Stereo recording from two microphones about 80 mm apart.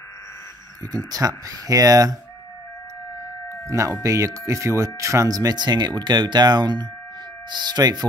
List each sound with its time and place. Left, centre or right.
0.9 s speech: right
4.0 s speech: right